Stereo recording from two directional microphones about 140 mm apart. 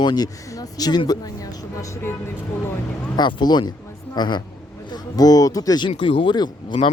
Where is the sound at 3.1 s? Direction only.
30° left (ahead or behind).